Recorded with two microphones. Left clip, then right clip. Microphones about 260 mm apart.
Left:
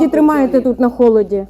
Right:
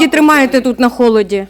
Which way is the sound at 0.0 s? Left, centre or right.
Right.